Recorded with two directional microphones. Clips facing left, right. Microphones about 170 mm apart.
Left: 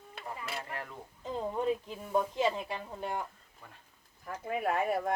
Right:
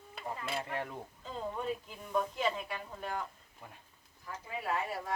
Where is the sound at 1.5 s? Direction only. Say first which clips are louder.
Left 6 dB; 25° left (ahead or behind).